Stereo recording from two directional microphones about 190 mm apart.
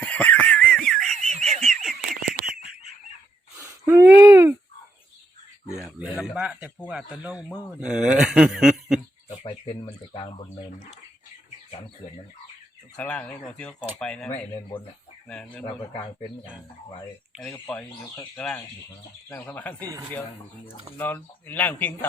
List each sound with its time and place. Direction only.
0.0 s a sound: 10° left (ahead or behind)
3.6 s a sound: 10° right (ahead or behind)
6.0 s speech: 5° right (ahead or behind)
9.4 s speech: 30° left (ahead or behind)
13.0 s speech: 10° left (ahead or behind)
15.6 s speech: 25° left (ahead or behind)
17.5 s speech: 10° left (ahead or behind)
21.0 s speech: 10° left (ahead or behind)